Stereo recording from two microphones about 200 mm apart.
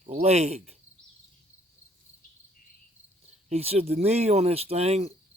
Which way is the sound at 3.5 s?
30° right (ahead or behind).